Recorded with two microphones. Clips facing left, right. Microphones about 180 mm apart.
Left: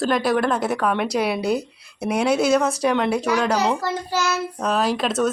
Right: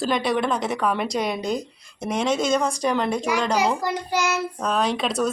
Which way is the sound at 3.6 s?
15° right (ahead or behind).